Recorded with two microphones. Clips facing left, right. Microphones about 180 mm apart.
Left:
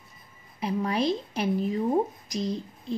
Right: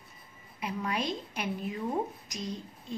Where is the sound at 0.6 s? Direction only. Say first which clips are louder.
Left 6 dB; 30° left (ahead or behind).